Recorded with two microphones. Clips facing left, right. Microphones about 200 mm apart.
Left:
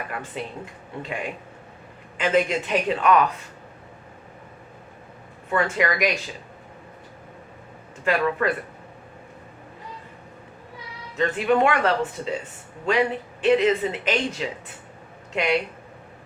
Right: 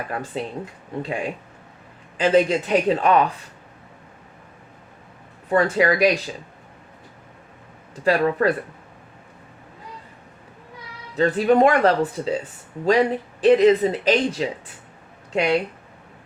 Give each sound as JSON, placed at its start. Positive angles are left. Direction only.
{"t": 0.1, "sound": "speech", "side_deg": -35}
{"t": 5.5, "sound": "speech", "side_deg": -35}
{"t": 8.0, "sound": "speech", "side_deg": -35}
{"t": 11.2, "sound": "speech", "side_deg": -35}